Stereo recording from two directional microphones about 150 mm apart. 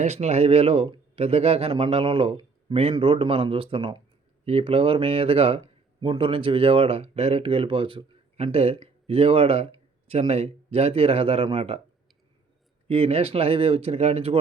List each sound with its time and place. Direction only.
0.0 s speech: 45° right (ahead or behind)
12.9 s speech: 40° right (ahead or behind)